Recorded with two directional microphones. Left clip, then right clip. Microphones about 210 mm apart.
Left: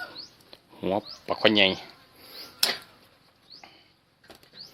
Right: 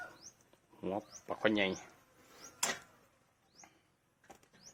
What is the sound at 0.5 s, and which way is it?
Speech, 40° left (ahead or behind).